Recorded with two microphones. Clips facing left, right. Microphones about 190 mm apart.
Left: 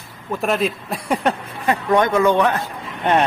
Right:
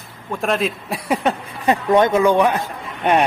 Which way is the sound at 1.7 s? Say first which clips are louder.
Right 2 dB; 20° right (ahead or behind).